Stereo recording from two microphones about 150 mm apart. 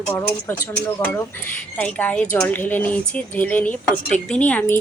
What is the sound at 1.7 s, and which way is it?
Speech, 10° left (ahead or behind).